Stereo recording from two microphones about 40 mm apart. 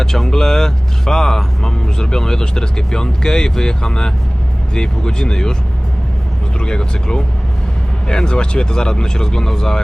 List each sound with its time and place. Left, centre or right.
0.0 s speech: centre
6.6 s speech: left